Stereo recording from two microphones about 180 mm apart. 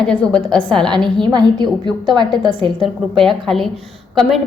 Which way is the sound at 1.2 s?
25° right (ahead or behind).